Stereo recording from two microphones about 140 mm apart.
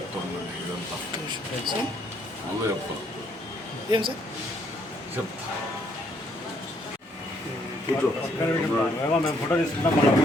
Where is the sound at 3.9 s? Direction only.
40° right (ahead or behind).